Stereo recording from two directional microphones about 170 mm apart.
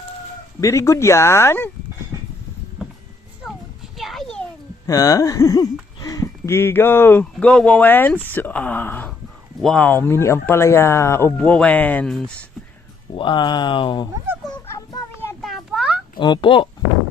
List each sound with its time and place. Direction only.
0.6 s speech: 15° left (ahead or behind)
3.9 s a sound: centre (ahead or behind)
4.9 s speech: 20° left (ahead or behind); by 12.5 s 5° left (ahead or behind)
13.1 s speech: 30° left (ahead or behind)
14.7 s child singing: 20° left (ahead or behind)
15.4 s a sound: centre (ahead or behind)
16.1 s speech: 25° left (ahead or behind)